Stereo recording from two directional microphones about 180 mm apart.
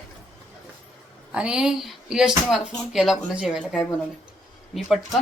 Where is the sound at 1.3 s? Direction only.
5° right (ahead or behind).